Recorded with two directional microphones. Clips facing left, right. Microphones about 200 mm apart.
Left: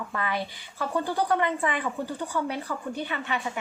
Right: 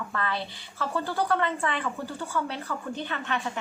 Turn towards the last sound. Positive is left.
turn(degrees=10)  # may be behind; listen again after turning